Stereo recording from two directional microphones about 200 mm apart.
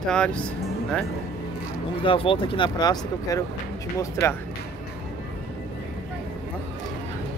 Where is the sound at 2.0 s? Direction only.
25° left (ahead or behind).